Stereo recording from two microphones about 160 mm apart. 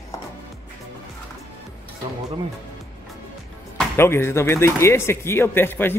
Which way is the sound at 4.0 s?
15° left (ahead or behind).